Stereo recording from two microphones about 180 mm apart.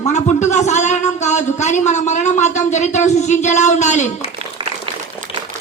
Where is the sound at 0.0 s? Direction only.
40° left (ahead or behind).